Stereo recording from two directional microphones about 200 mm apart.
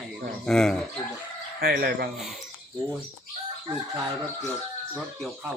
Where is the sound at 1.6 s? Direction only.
50° right (ahead or behind).